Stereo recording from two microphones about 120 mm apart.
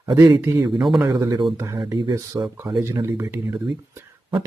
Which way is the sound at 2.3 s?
25° right (ahead or behind).